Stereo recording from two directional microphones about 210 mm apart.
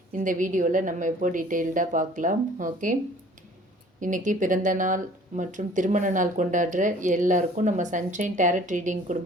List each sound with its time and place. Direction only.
0.1 s speech: 40° right (ahead or behind)
4.0 s speech: 40° right (ahead or behind)